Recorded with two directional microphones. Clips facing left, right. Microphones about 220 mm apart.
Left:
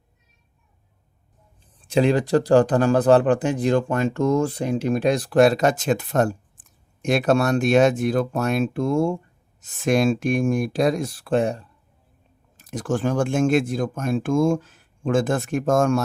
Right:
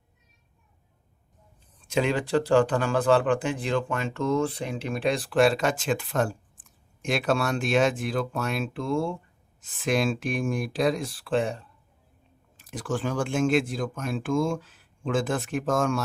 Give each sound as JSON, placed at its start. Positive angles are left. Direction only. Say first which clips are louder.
{"t": 1.8, "sound": "speech", "louder": "left 6 dB", "side_deg": 35}